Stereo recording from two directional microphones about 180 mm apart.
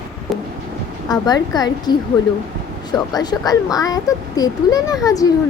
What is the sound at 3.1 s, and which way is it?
A child's voice, 20° left (ahead or behind).